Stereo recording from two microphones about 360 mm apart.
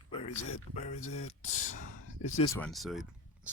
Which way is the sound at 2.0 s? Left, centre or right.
Left.